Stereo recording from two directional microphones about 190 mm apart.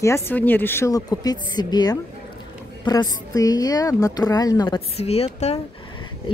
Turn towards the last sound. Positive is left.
turn(degrees=30)  # may be behind; listen again after turning